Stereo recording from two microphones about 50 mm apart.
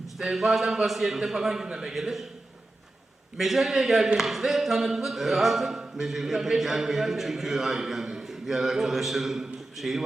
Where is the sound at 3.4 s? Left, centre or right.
Centre.